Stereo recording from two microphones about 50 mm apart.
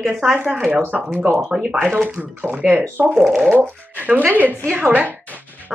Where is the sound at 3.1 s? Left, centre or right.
Centre.